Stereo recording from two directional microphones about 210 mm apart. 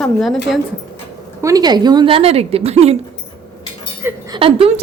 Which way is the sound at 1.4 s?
15° right (ahead or behind).